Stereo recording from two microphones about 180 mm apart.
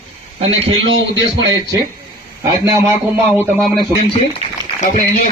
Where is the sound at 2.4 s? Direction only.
15° right (ahead or behind).